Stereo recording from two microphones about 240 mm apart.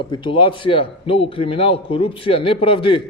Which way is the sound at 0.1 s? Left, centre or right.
Centre.